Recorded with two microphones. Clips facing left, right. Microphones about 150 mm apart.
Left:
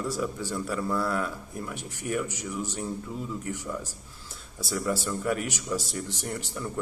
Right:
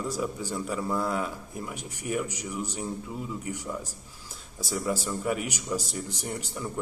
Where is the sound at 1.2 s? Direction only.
5° right (ahead or behind).